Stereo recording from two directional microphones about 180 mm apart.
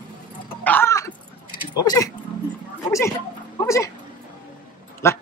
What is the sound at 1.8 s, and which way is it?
Speech, 20° left (ahead or behind).